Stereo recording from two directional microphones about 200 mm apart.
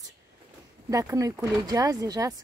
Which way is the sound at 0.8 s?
15° right (ahead or behind).